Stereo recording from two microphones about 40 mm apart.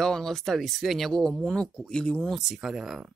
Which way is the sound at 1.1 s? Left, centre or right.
Centre.